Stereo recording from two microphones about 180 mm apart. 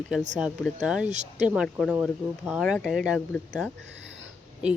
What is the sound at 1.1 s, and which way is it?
Speech, 40° right (ahead or behind).